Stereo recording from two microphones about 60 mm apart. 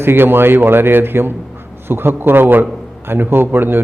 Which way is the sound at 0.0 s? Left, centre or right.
Right.